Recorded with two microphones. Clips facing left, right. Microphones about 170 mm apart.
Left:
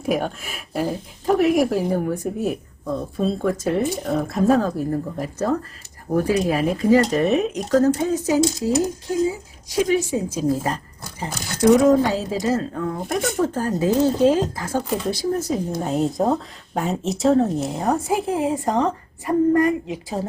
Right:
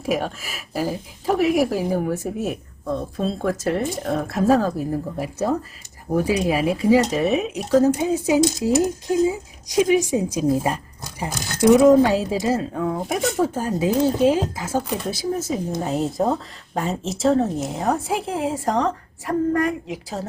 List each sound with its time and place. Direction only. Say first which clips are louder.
0.0 s speech: left 1 dB; centre (ahead or behind)